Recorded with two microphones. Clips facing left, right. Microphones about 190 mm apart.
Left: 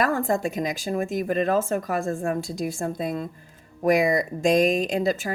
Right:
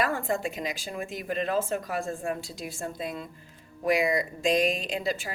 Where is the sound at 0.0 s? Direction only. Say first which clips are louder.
Left 5 dB; 45° left (ahead or behind).